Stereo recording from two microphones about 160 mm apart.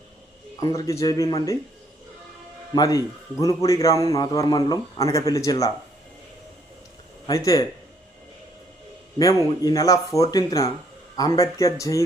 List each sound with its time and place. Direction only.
0.8 s speech: 20° left (ahead or behind)
2.7 s speech: 25° left (ahead or behind)
7.3 s speech: 20° left (ahead or behind)
9.1 s speech: 25° left (ahead or behind)